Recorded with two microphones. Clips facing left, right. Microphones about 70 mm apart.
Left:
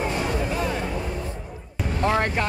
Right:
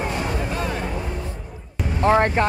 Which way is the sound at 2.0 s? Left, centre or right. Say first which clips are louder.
Right 6 dB; right.